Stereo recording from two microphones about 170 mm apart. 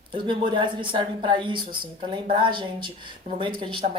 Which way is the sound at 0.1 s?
30° right (ahead or behind).